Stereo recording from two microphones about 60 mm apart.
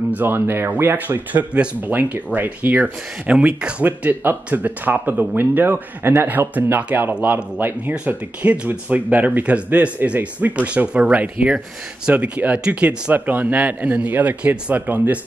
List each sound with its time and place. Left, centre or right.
0.1 s speech: right; by 13.1 s centre
13.1 s speech: right